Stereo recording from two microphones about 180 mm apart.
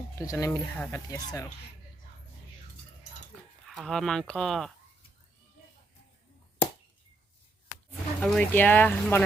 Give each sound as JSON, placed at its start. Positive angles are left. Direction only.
{"t": 0.2, "sound": "speech", "side_deg": 20}
{"t": 3.7, "sound": "speech", "side_deg": 0}
{"t": 7.9, "sound": "speech", "side_deg": 5}